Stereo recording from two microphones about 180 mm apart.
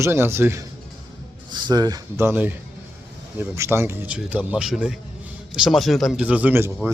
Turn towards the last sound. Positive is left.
turn(degrees=-10)  # may be behind; listen again after turning